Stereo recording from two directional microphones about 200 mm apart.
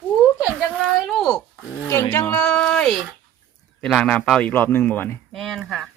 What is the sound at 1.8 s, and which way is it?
Zipper, 10° left (ahead or behind).